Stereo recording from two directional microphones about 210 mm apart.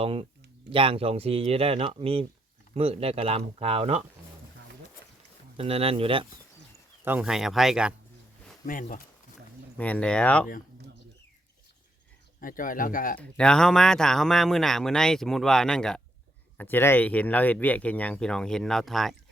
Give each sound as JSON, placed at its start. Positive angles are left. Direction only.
{"t": 0.0, "sound": "speech", "side_deg": -25}
{"t": 5.5, "sound": "speech", "side_deg": -25}
{"t": 7.0, "sound": "speech", "side_deg": -5}
{"t": 8.6, "sound": "speech", "side_deg": 40}
{"t": 9.7, "sound": "speech", "side_deg": 5}
{"t": 12.4, "sound": "speech", "side_deg": 40}
{"t": 13.1, "sound": "speech", "side_deg": 5}